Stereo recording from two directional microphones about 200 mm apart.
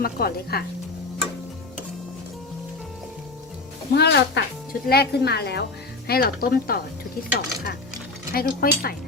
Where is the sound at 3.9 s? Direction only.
55° left (ahead or behind).